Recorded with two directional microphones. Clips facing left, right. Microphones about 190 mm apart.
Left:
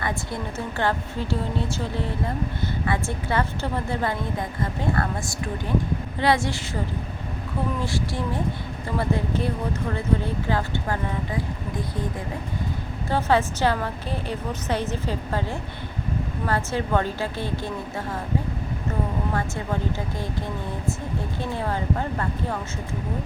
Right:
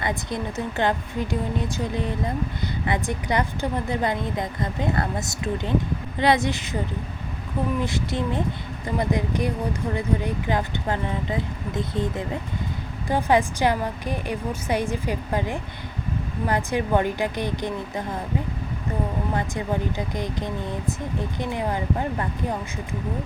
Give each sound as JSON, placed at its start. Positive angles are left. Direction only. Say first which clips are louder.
{"t": 0.0, "sound": "a woman's voice", "louder": "right 2 dB", "side_deg": -20}
{"t": 7.8, "sound": "a woman's voice", "louder": "right 2 dB", "side_deg": -20}
{"t": 19.3, "sound": "a woman's voice", "louder": "right 1 dB", "side_deg": -20}